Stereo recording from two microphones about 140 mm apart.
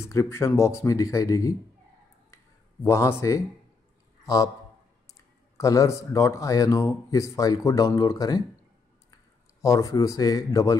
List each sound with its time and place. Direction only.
0.1 s speech: 20° left (ahead or behind)
2.3 s a sound: 20° left (ahead or behind)
5.6 s speech: 25° left (ahead or behind)
9.6 s speech: 25° left (ahead or behind)